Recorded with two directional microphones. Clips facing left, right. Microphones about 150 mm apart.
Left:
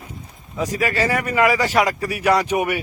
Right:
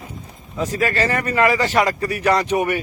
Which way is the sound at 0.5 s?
10° left (ahead or behind).